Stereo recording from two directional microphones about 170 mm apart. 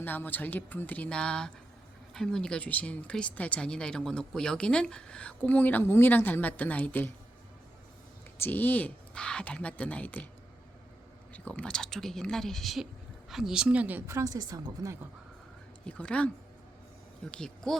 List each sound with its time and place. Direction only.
0.0 s speech: 10° left (ahead or behind)
8.4 s speech: 10° left (ahead or behind)
11.3 s speech: 10° left (ahead or behind); by 14.9 s 20° right (ahead or behind)
15.8 s speech: 5° left (ahead or behind)
17.3 s speech: 5° left (ahead or behind)